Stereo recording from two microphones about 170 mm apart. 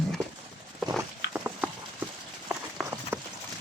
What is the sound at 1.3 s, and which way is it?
Clip-clop, 10° right (ahead or behind).